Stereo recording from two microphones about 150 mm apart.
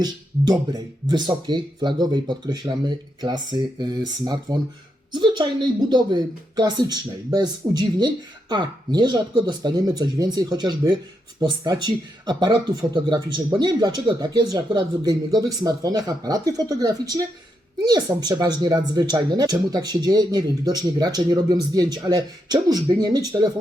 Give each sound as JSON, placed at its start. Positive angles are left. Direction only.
{"t": 0.0, "sound": "a woman's voice", "side_deg": -25}